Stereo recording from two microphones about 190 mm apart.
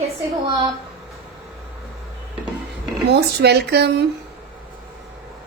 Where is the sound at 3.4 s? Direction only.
60° right (ahead or behind).